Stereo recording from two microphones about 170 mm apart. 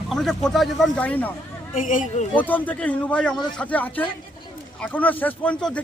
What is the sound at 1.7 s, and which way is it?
Speech, 50° left (ahead or behind).